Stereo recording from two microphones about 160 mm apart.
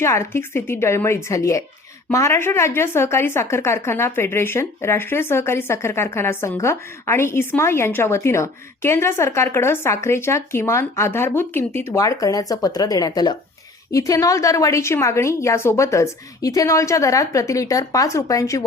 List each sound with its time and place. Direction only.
0.0 s a woman's voice: 15° left (ahead or behind)